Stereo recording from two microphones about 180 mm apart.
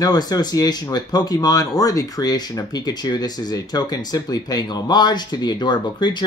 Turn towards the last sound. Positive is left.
turn(degrees=25)  # may be behind; listen again after turning